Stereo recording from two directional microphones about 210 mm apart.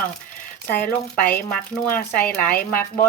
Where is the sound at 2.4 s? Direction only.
40° left (ahead or behind).